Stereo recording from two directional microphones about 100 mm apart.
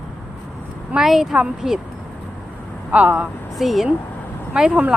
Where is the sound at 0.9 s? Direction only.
5° right (ahead or behind).